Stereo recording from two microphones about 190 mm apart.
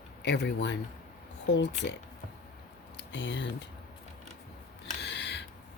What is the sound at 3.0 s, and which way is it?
Speech, 70° left (ahead or behind).